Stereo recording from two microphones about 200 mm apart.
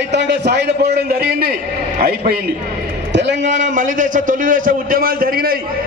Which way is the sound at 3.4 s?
35° right (ahead or behind).